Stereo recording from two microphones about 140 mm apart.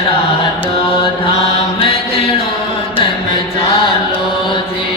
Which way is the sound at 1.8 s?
45° left (ahead or behind).